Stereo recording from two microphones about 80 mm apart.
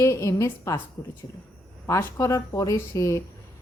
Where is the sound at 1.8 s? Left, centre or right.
Left.